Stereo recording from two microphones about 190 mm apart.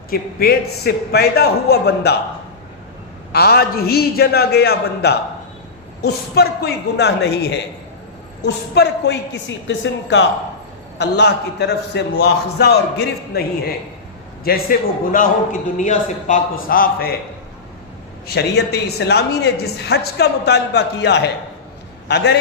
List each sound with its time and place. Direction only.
0.1 s a woman's voice: 55° left (ahead or behind)
3.3 s a woman's voice: 55° left (ahead or behind)
18.3 s a woman's voice: 60° left (ahead or behind)